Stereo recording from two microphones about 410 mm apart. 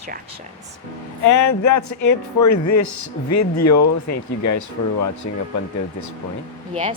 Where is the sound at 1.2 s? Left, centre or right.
Left.